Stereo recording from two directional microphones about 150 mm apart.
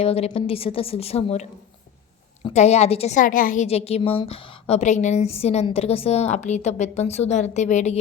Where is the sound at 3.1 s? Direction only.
65° left (ahead or behind).